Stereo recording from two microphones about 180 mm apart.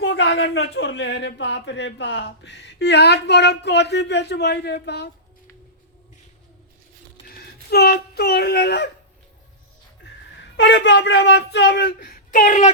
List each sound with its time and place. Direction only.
0.0 s speech: 75° left (ahead or behind)
7.3 s speech: 60° left (ahead or behind)
10.6 s speech: 85° left; by 12.7 s 45° left (ahead or behind)